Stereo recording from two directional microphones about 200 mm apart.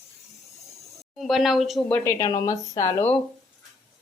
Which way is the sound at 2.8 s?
30° left (ahead or behind).